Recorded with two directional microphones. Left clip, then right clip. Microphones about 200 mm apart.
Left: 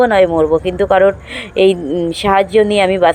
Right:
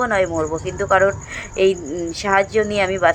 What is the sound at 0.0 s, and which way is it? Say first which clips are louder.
Speech: left 8 dB; 35° left (ahead or behind).